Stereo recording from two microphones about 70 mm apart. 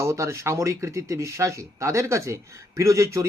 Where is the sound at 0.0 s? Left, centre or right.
Right.